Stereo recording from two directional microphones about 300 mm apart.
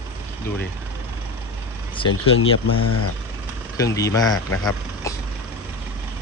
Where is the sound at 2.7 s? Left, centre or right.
Left.